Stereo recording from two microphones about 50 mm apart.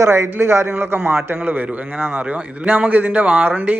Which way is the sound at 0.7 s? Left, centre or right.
Right.